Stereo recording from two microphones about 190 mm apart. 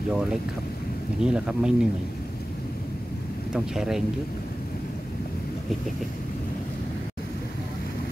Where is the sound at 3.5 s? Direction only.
5° right (ahead or behind).